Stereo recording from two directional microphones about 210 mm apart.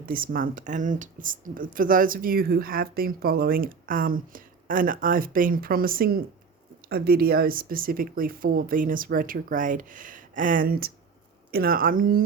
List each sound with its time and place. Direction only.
0.0 s speech: 40° right (ahead or behind)